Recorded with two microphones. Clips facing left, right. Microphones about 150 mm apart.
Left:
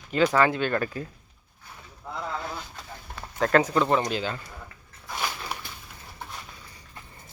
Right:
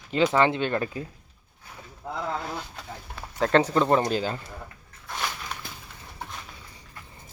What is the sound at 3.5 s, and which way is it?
Speech, 30° right (ahead or behind).